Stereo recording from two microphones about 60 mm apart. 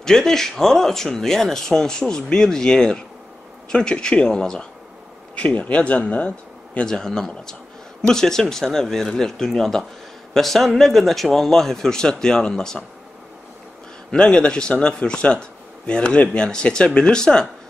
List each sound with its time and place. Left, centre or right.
0.0 s speech: centre
5.3 s speech: left
6.9 s a man's voice: centre
14.1 s speech: centre